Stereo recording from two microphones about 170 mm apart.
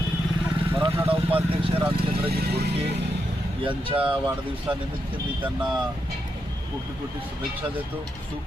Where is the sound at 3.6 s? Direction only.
30° right (ahead or behind).